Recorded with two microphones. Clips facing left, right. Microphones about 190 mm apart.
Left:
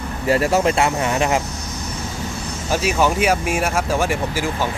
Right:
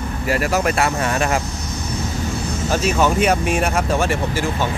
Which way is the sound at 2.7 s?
10° left (ahead or behind).